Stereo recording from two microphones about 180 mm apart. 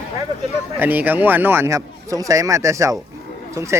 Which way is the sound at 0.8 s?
10° right (ahead or behind).